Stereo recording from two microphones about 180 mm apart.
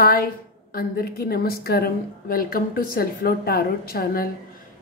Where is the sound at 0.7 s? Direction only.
55° left (ahead or behind).